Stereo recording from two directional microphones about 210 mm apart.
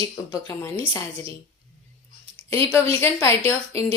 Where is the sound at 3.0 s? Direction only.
10° left (ahead or behind).